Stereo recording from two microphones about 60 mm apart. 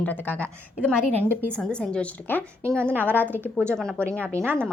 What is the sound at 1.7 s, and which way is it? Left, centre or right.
Speech, centre.